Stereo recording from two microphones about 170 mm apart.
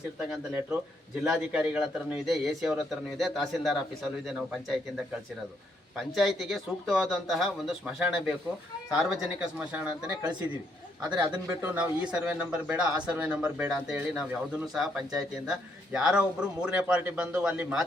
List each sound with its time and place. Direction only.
0.3 s speech: 5° right (ahead or behind)
6.0 s speech: centre (ahead or behind)
11.1 s speech: 10° right (ahead or behind)